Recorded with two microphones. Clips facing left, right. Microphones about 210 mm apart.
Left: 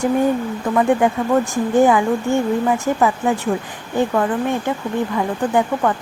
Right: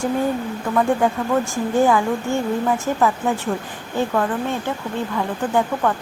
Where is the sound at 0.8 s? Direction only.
15° left (ahead or behind).